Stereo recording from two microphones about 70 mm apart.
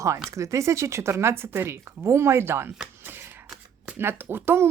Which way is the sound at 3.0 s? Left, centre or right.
Right.